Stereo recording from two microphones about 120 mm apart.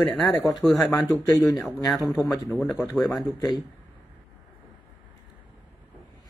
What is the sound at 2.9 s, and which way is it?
Speech, centre (ahead or behind).